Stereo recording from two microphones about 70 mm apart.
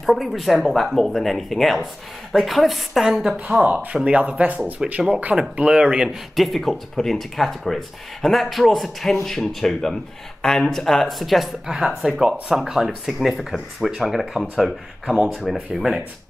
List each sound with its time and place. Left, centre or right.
0.0 s speech: centre
3.6 s speech: centre
6.0 s speech: centre